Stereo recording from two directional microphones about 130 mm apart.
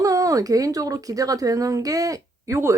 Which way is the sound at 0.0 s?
25° right (ahead or behind).